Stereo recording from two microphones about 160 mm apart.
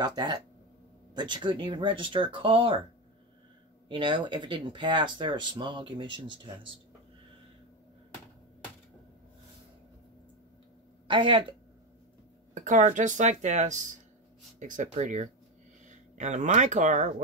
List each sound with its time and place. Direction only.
0.0 s speech: 25° right (ahead or behind)
3.9 s speech: 30° right (ahead or behind)
11.1 s speech: 30° right (ahead or behind)
12.5 s speech: 50° right (ahead or behind)